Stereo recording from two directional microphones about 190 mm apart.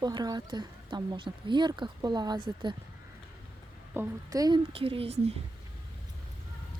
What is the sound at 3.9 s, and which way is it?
Speech, 15° right (ahead or behind).